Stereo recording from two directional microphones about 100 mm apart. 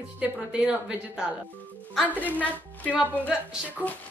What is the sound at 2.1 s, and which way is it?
A woman's voice, 15° left (ahead or behind).